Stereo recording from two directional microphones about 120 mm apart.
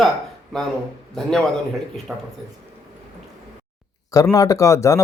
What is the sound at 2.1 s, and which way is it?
Speech, 5° right (ahead or behind).